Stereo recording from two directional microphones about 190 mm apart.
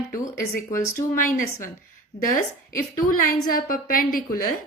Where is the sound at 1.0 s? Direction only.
45° left (ahead or behind).